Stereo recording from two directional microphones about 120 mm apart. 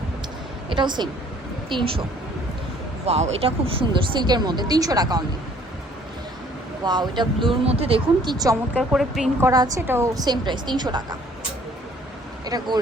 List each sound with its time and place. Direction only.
0.7 s a woman's voice: 40° right (ahead or behind)
3.1 s speech: 60° right (ahead or behind); by 5.2 s 30° right (ahead or behind)
6.8 s speech: 35° right (ahead or behind)
7.7 s speech: 55° right (ahead or behind); by 8.5 s 35° right (ahead or behind)
8.8 s speech: centre (ahead or behind)
9.4 s a woman's voice: 30° right (ahead or behind)
9.8 s a woman's voice: 20° right (ahead or behind)
10.2 s speech: 35° right (ahead or behind)
12.5 s speech: 35° right (ahead or behind)